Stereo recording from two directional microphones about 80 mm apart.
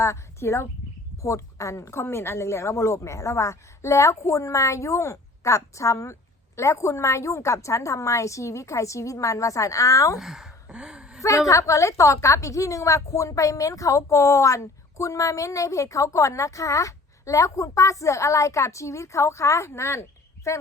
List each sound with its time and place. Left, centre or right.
0.0 s a woman's voice: left
10.2 s a sound: centre
11.2 s a woman's voice: left